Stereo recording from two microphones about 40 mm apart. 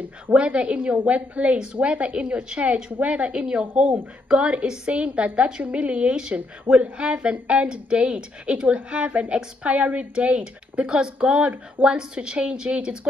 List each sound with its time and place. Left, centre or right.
0.3 s a woman's voice: right
1.0 s a woman's voice: right
10.1 s a woman's voice: right